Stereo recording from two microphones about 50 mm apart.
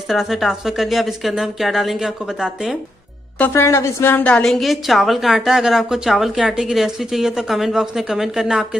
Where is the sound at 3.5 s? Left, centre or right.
Left.